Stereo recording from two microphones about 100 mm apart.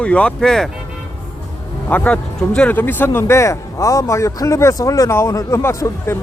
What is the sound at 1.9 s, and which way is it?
Speech, 15° left (ahead or behind).